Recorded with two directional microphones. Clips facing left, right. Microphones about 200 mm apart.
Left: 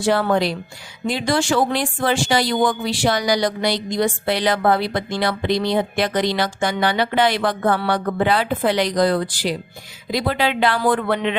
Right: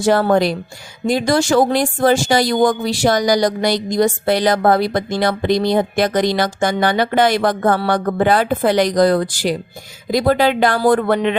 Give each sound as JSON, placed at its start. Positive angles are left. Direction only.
{"t": 0.0, "sound": "speech", "side_deg": -45}